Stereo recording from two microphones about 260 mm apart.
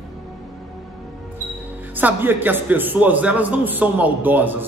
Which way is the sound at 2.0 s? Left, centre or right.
Centre.